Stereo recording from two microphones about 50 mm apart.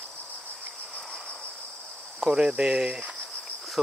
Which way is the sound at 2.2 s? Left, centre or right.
Centre.